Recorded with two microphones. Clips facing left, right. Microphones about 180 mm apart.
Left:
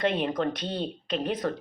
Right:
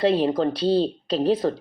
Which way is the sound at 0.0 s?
30° right (ahead or behind).